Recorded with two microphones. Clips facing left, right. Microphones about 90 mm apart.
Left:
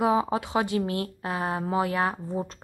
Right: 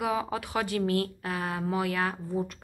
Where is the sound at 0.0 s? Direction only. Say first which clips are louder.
Left 6 dB; 25° left (ahead or behind).